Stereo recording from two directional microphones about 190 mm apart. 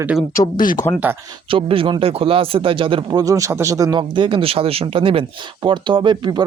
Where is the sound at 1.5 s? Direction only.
30° right (ahead or behind).